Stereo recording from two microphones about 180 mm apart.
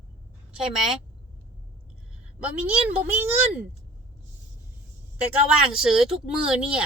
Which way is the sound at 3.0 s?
10° right (ahead or behind).